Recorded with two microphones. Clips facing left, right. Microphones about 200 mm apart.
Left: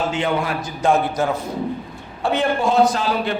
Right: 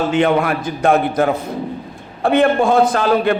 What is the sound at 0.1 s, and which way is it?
A man's voice, 60° right (ahead or behind).